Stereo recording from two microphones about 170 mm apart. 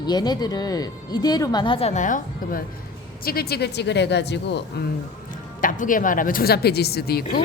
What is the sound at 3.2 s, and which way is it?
Speech, 65° left (ahead or behind).